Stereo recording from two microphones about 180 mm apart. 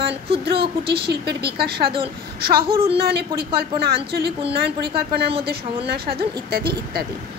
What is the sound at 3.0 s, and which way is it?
Speech, 60° right (ahead or behind).